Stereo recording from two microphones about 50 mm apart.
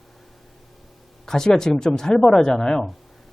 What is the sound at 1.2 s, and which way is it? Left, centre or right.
Speech, centre.